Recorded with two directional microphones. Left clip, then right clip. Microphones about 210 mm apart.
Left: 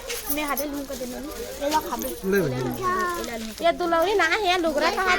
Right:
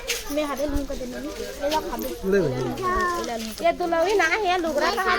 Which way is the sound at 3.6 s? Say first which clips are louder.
Even; 40° left (ahead or behind).